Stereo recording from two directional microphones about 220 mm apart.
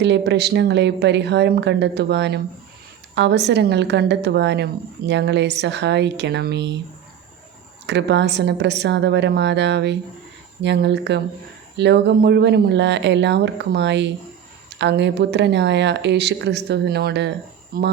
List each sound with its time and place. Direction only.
0.0 s a woman's voice: 50° right (ahead or behind)
7.9 s a woman's voice: 50° right (ahead or behind)